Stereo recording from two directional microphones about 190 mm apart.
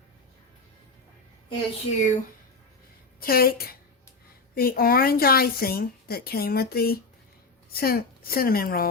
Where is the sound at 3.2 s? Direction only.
50° left (ahead or behind).